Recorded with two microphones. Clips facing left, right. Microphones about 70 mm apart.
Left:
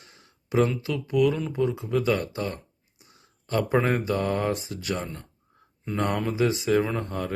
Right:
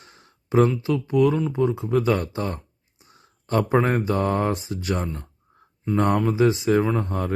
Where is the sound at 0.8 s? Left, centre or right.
Right.